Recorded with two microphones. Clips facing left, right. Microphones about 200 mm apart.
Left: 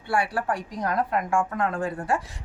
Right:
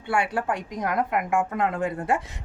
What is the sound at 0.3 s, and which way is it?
A woman's voice, 20° right (ahead or behind).